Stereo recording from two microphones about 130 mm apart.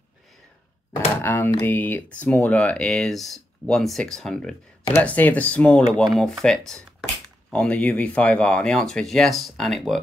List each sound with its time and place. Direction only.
1.2 s speech: 15° left (ahead or behind); by 9.9 s centre (ahead or behind)